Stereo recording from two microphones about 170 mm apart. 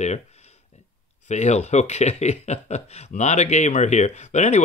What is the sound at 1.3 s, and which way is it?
Speech, 45° left (ahead or behind).